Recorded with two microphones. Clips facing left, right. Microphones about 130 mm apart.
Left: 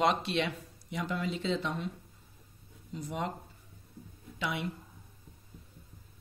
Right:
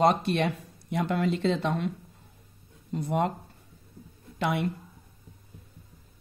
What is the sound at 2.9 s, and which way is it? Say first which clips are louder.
Speech: right 9 dB; 60° right (ahead or behind).